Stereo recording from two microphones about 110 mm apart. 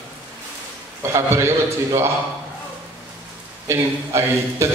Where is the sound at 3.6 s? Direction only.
25° right (ahead or behind).